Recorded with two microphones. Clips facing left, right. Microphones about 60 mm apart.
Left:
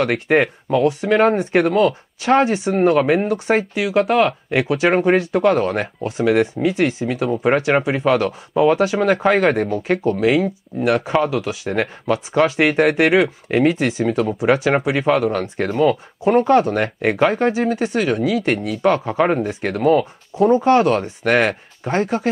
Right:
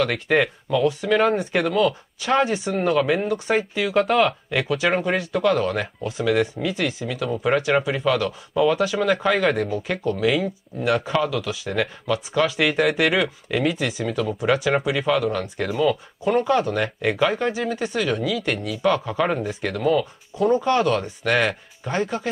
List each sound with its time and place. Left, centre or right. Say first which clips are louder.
0.0 s speech: left 4 dB; left
3.7 s speech: left 1 dB; left